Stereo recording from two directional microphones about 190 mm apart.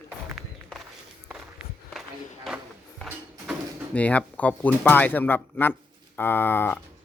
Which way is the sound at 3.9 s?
5° left (ahead or behind).